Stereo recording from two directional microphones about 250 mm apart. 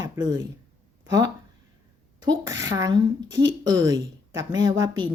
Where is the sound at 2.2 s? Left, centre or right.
Centre.